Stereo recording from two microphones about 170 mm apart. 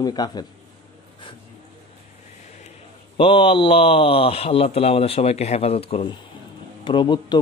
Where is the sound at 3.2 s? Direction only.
35° left (ahead or behind).